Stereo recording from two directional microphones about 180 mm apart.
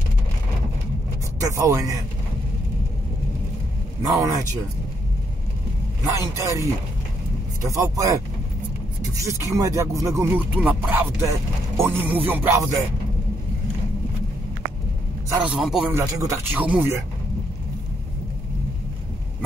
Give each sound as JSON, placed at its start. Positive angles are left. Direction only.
{"t": 1.4, "sound": "speech", "side_deg": -20}
{"t": 4.2, "sound": "speech", "side_deg": -20}
{"t": 6.1, "sound": "speech", "side_deg": -15}
{"t": 15.4, "sound": "speech", "side_deg": -5}
{"t": 15.9, "sound": "speech", "side_deg": -15}